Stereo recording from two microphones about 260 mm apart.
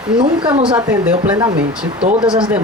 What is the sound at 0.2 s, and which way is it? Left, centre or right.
Speech, centre.